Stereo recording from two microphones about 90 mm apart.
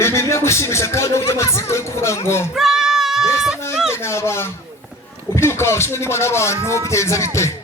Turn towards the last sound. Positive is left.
turn(degrees=30)  # may be behind; listen again after turning